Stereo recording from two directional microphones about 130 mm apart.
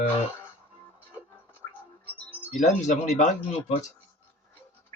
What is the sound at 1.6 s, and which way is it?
Music, 25° left (ahead or behind).